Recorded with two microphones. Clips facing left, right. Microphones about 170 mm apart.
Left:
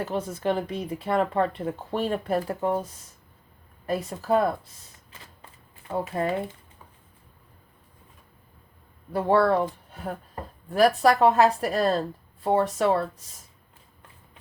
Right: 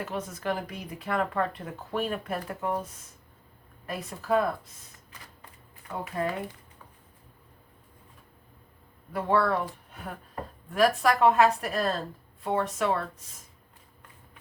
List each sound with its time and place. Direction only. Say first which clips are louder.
0.0 s speech: left 5 dB; 30° left (ahead or behind)
9.1 s speech: left 5 dB; 30° left (ahead or behind)